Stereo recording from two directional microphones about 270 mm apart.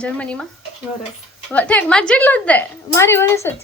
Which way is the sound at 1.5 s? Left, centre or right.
Centre.